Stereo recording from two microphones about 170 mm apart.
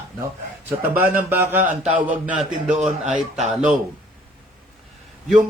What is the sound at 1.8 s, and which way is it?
Speech, 40° right (ahead or behind).